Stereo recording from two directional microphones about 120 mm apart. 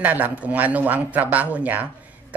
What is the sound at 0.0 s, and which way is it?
Speech, 15° right (ahead or behind).